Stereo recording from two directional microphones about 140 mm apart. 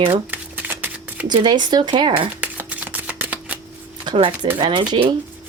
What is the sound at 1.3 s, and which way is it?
Speech, 30° right (ahead or behind).